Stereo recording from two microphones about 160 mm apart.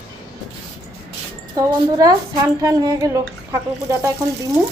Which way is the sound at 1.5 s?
20° right (ahead or behind).